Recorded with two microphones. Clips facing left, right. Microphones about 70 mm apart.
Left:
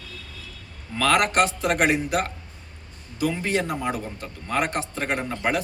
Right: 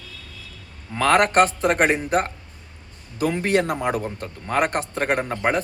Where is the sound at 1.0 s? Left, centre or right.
Right.